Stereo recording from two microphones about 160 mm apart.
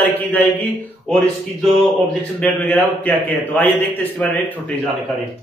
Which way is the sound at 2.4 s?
10° left (ahead or behind).